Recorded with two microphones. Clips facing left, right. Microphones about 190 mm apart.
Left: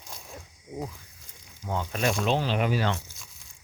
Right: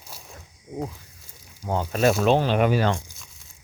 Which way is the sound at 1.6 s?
40° right (ahead or behind).